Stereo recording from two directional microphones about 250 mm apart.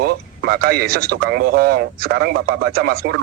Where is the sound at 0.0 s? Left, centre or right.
Right.